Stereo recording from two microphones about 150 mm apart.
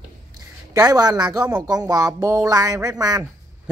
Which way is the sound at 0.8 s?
25° right (ahead or behind).